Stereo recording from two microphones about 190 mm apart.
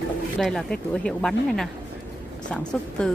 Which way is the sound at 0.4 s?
Centre (ahead or behind).